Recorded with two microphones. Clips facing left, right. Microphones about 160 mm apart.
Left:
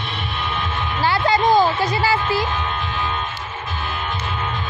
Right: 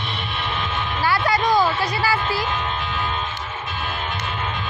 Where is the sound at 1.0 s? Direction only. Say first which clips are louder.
Left 3 dB; 25° left (ahead or behind).